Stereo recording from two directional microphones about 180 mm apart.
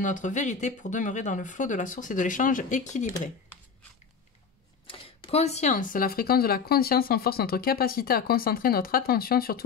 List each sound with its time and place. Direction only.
0.0 s speech: 45° left (ahead or behind)
4.8 s speech: 30° left (ahead or behind); by 9.7 s 55° left (ahead or behind)